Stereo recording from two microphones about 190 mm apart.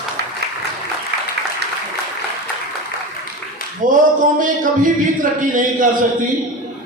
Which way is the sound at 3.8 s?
45° right (ahead or behind).